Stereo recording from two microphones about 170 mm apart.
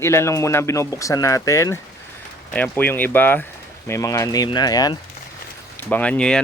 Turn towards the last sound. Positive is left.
turn(degrees=5)  # may be behind; listen again after turning